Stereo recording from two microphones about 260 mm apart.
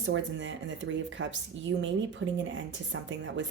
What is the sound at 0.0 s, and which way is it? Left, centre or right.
Speech, right.